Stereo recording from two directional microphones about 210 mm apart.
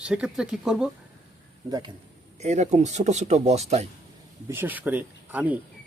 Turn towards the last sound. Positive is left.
turn(degrees=-5)  # may be behind; listen again after turning